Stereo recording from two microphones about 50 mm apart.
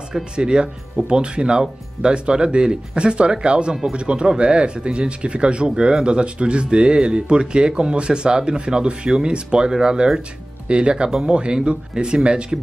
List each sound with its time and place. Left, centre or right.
0.1 s speech: centre